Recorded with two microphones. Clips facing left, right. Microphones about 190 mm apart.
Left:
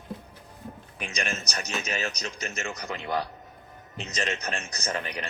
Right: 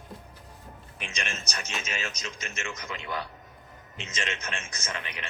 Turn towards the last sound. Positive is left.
turn(degrees=40)  # may be behind; listen again after turning